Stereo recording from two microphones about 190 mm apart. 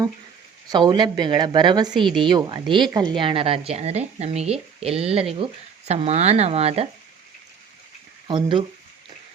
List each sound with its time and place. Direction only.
0.7 s a woman's voice: 20° right (ahead or behind)
8.3 s a woman's voice: 25° right (ahead or behind)